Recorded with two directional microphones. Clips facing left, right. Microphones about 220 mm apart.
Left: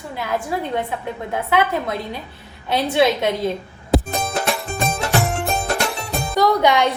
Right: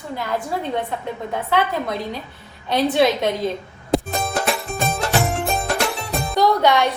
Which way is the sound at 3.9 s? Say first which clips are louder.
Left 1 dB; centre (ahead or behind).